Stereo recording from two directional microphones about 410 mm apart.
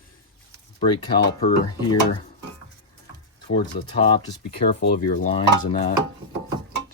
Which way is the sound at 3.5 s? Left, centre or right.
Centre.